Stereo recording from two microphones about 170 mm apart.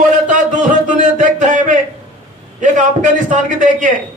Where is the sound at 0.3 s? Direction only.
50° right (ahead or behind).